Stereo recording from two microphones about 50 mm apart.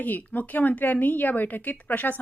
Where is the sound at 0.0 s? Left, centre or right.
Left.